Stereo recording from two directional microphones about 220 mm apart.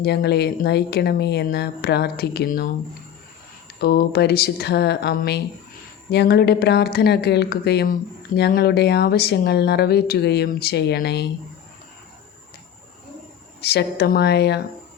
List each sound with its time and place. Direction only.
0.0 s speech: 50° left (ahead or behind)
3.8 s speech: 45° left (ahead or behind)
13.6 s speech: 45° left (ahead or behind)